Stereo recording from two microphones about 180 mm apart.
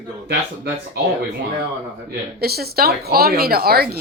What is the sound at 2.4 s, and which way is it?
A woman's voice, 60° right (ahead or behind).